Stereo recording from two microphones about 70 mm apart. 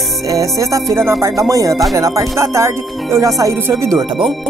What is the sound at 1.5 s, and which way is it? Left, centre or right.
Speech, right.